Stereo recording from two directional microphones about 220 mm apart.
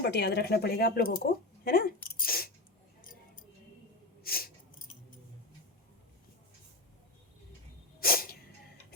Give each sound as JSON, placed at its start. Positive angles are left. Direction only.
{"t": 0.0, "sound": "speech", "side_deg": 45}
{"t": 4.2, "sound": "a sound", "side_deg": 45}
{"t": 8.0, "sound": "sneeze", "side_deg": 40}